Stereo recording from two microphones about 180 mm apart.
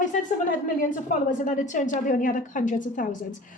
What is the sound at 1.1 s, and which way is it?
A woman's voice, 45° left (ahead or behind).